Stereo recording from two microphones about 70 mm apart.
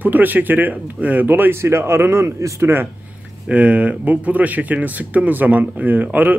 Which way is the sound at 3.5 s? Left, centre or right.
Centre.